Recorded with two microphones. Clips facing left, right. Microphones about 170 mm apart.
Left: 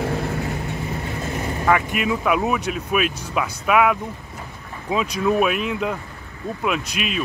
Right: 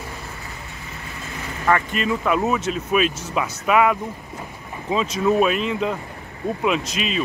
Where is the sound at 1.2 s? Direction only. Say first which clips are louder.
Left 5 dB; 35° left (ahead or behind).